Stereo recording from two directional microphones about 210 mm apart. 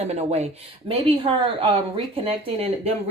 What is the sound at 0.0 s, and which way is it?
Speech, 30° right (ahead or behind).